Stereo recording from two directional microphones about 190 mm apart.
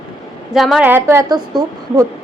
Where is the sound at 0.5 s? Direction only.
Centre (ahead or behind); by 2.1 s 20° right (ahead or behind).